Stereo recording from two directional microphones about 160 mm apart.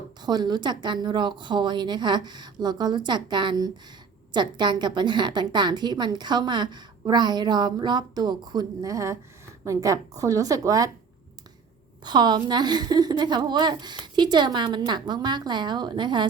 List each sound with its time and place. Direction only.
0.2 s a woman's voice: 25° right (ahead or behind)
12.0 s a woman's voice: 25° right (ahead or behind)